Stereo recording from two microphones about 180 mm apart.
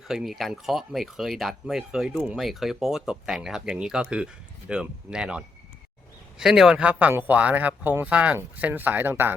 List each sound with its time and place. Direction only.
0.1 s speech: centre (ahead or behind)